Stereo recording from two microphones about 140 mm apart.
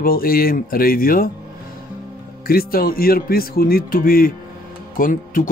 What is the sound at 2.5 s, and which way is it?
Speech, 90° left.